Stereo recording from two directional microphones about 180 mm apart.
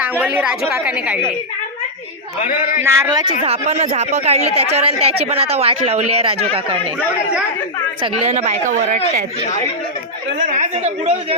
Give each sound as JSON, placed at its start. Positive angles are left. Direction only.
{"t": 0.2, "sound": "a woman's voice", "side_deg": -10}
{"t": 2.4, "sound": "a man's voice", "side_deg": 45}
{"t": 2.8, "sound": "a woman's voice", "side_deg": -15}
{"t": 3.4, "sound": "speech", "side_deg": -35}
{"t": 8.0, "sound": "speech", "side_deg": -35}
{"t": 10.4, "sound": "speech", "side_deg": -40}